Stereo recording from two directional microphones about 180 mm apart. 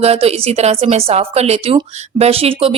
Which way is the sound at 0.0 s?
35° right (ahead or behind).